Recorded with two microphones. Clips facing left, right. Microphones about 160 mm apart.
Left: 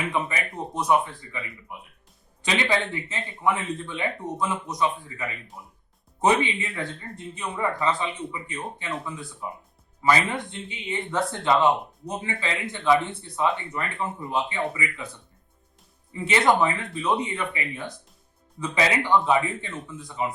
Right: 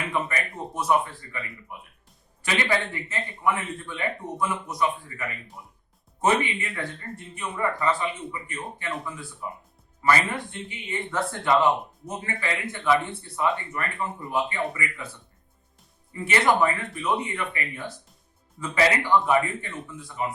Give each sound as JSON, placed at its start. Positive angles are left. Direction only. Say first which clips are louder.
{"t": 0.1, "sound": "speech", "louder": "even", "side_deg": 15}
{"t": 2.4, "sound": "speech", "louder": "left 1 dB", "side_deg": 15}
{"t": 6.2, "sound": "speech", "louder": "left 2 dB", "side_deg": 20}
{"t": 16.2, "sound": "speech", "louder": "left 1 dB", "side_deg": 20}